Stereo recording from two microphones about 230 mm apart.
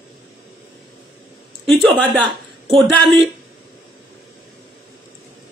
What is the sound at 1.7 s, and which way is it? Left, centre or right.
Speech, centre.